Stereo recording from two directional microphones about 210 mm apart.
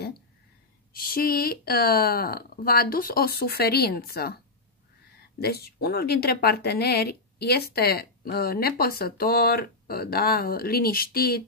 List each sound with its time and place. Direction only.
0.9 s speech: 45° left (ahead or behind)
5.4 s speech: 50° left (ahead or behind)